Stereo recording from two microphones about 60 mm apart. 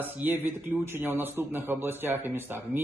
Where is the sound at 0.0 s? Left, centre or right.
Right.